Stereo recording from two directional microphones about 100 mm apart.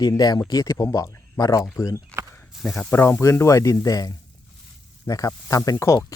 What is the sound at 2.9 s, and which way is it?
A man's voice, 25° left (ahead or behind).